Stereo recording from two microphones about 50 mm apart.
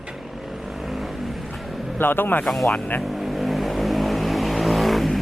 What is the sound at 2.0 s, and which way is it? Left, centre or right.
Speech, left.